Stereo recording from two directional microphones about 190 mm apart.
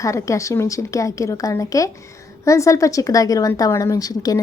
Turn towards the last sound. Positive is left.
turn(degrees=20)  # may be behind; listen again after turning